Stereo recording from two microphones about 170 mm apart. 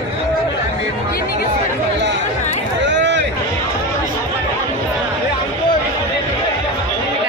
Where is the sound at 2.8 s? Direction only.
90° right.